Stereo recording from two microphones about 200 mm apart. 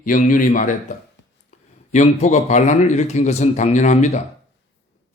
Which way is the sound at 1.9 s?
35° left (ahead or behind).